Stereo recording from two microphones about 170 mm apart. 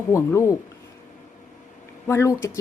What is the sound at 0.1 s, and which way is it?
Speech, 15° left (ahead or behind).